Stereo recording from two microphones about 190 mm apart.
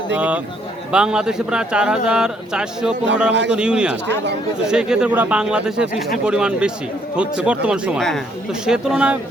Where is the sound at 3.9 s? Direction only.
65° right (ahead or behind).